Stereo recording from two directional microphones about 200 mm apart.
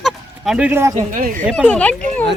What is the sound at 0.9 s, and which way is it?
Speech, 40° right (ahead or behind).